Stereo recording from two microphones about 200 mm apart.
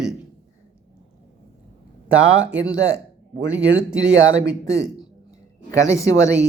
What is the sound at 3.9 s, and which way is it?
Speech, 65° right (ahead or behind).